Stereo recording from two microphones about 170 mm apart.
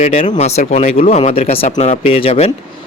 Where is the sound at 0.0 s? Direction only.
40° left (ahead or behind).